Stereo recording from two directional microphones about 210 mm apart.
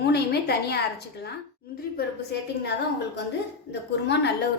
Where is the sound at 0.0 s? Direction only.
50° left (ahead or behind).